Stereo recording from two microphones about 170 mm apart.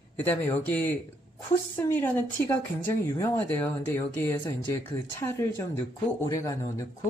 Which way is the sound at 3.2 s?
10° left (ahead or behind).